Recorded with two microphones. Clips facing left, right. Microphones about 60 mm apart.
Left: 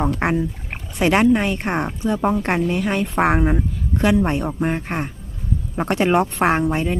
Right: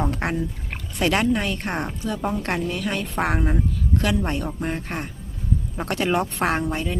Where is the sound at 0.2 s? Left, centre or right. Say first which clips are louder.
Left 5 dB; left.